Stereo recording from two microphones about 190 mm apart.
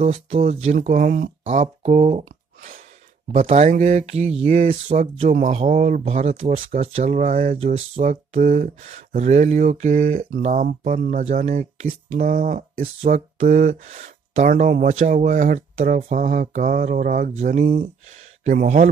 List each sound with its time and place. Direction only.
0.0 s speech: 30° right (ahead or behind)
0.7 s speech: 45° right (ahead or behind)
4.5 s speech: 45° right (ahead or behind)